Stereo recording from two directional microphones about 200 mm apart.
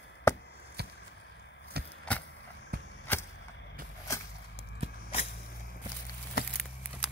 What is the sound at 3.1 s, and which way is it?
Arrow, 10° left (ahead or behind).